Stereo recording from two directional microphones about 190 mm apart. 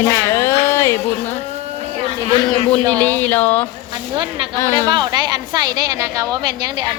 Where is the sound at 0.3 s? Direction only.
15° left (ahead or behind).